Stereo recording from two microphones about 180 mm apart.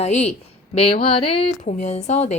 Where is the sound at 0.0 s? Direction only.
35° left (ahead or behind).